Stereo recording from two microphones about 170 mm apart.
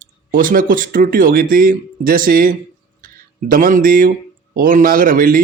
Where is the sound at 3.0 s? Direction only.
55° right (ahead or behind).